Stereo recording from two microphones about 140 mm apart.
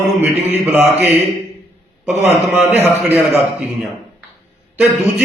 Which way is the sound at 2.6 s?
15° right (ahead or behind).